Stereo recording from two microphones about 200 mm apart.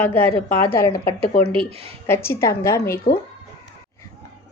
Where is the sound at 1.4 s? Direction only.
25° right (ahead or behind).